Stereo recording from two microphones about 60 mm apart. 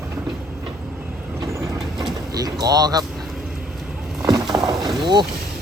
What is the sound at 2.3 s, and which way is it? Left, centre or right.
Speech, right.